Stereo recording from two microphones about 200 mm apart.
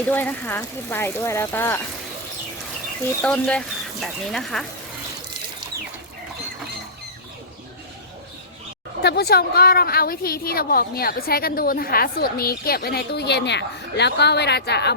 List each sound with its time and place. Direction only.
0.1 s speech: 10° left (ahead or behind)
3.2 s speech: 5° left (ahead or behind)
9.0 s a woman's voice: 55° left (ahead or behind)